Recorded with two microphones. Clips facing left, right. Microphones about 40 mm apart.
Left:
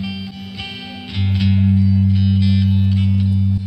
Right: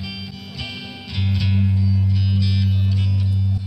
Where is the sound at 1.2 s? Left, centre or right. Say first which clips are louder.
Left 5 dB; left.